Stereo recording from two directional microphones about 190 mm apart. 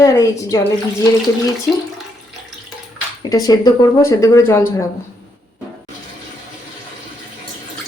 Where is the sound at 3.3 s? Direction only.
20° left (ahead or behind).